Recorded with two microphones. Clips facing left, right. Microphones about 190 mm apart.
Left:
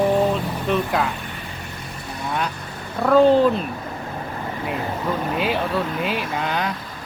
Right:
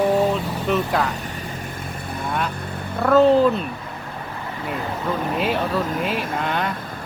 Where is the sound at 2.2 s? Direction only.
Centre (ahead or behind).